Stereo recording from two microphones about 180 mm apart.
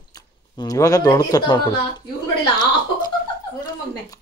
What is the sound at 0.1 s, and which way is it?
Speech, 20° left (ahead or behind).